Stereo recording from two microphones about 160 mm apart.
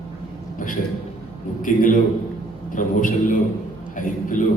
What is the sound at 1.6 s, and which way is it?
A man's voice, 55° left (ahead or behind).